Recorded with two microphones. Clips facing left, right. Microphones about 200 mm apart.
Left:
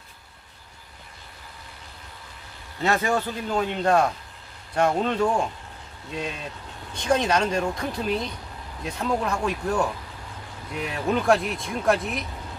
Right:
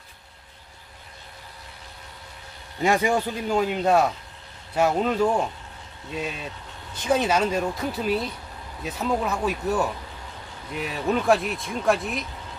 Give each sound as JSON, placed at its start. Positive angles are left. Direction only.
{"t": 2.8, "sound": "speech", "side_deg": -15}